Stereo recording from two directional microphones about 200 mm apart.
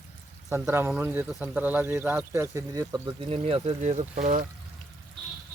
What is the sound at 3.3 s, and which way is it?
Speech, 30° right (ahead or behind).